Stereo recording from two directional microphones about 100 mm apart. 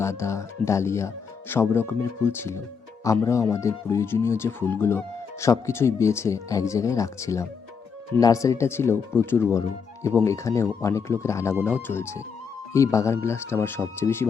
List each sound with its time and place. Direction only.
0.0 s speech: 30° left (ahead or behind)